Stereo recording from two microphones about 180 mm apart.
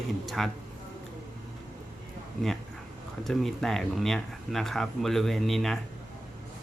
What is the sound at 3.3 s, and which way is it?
Speech, centre (ahead or behind).